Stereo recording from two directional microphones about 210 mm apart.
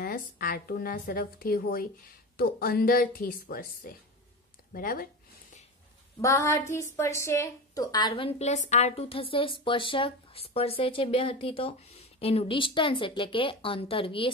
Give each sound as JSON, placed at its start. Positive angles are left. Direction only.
{"t": 0.0, "sound": "speech", "side_deg": 40}
{"t": 6.2, "sound": "a woman's voice", "side_deg": 15}